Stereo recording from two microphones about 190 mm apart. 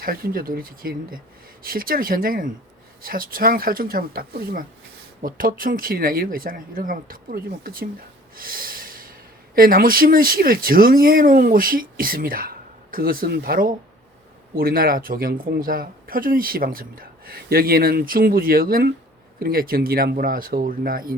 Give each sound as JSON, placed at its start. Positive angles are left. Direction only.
{"t": 0.0, "sound": "speech", "side_deg": -50}
{"t": 8.4, "sound": "snort", "side_deg": -50}
{"t": 9.6, "sound": "speech", "side_deg": -50}